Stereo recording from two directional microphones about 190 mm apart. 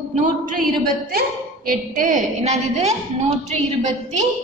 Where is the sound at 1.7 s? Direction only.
45° right (ahead or behind).